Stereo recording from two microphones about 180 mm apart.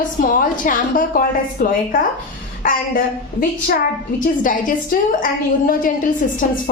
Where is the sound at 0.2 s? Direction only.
50° left (ahead or behind).